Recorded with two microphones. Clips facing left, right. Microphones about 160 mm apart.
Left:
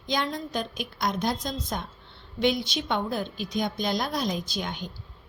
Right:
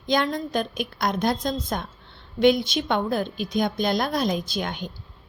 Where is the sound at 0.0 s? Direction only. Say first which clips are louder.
Right 5 dB; 55° right (ahead or behind).